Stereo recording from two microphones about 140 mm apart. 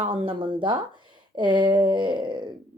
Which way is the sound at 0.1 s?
40° right (ahead or behind).